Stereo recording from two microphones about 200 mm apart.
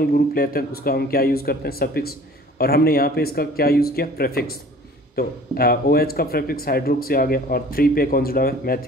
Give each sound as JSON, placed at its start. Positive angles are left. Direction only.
{"t": 0.1, "sound": "speech", "side_deg": 45}